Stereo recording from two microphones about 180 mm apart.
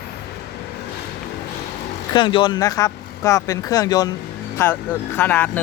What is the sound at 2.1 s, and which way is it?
Speech, 25° left (ahead or behind).